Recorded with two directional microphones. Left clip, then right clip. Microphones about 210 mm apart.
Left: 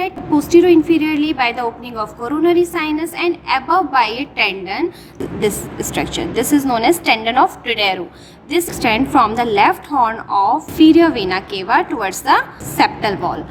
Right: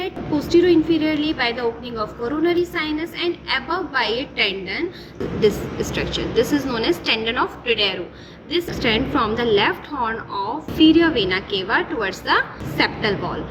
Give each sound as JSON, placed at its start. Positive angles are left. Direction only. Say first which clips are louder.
{"t": 0.0, "sound": "a woman's voice", "louder": "left 7 dB", "side_deg": 55}